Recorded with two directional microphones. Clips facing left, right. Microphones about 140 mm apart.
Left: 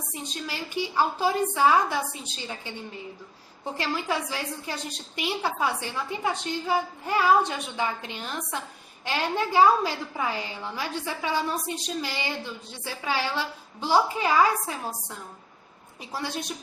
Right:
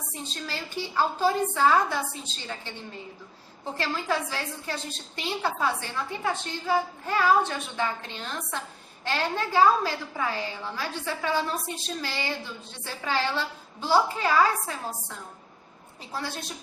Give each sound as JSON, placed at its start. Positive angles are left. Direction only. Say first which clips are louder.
{"t": 0.1, "sound": "a woman's voice", "louder": "left 1 dB", "side_deg": 15}
{"t": 3.8, "sound": "a woman's voice", "louder": "even", "side_deg": 15}
{"t": 16.1, "sound": "a woman's voice", "louder": "left 2 dB", "side_deg": 15}